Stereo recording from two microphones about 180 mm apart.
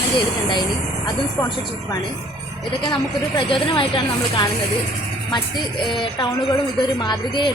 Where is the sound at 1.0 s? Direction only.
25° left (ahead or behind).